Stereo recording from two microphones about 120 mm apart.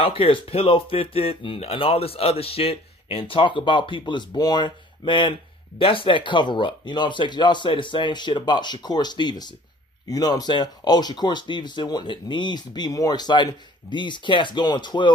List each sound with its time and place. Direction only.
0.0 s speech: 50° left (ahead or behind)